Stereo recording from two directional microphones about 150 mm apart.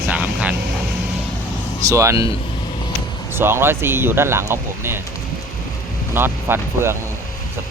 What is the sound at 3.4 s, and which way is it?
Speech, 15° right (ahead or behind).